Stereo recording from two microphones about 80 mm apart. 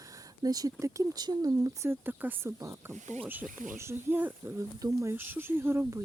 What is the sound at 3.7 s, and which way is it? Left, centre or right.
Speech, right.